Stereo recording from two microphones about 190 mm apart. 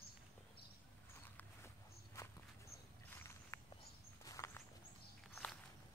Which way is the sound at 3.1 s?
15° left (ahead or behind).